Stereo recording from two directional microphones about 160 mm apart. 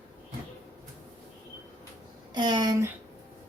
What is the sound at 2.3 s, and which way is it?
Speech, 25° right (ahead or behind).